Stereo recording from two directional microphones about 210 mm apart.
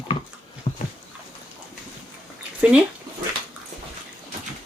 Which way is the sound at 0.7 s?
35° left (ahead or behind).